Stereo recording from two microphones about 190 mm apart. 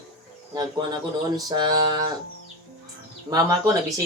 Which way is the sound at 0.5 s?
20° right (ahead or behind).